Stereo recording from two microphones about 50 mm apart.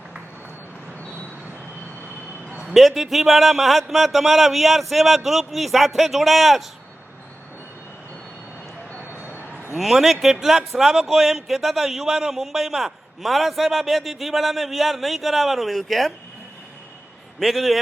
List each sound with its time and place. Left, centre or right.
2.7 s speech: centre
9.3 s a sound: left
9.7 s speech: centre
17.4 s speech: centre